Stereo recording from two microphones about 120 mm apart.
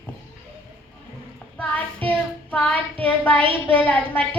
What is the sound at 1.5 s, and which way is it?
Child singing, 10° left (ahead or behind).